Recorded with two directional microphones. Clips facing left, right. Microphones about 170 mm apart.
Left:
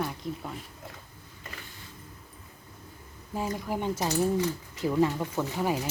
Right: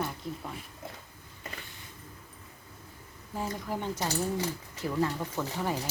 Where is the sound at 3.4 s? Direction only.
15° left (ahead or behind).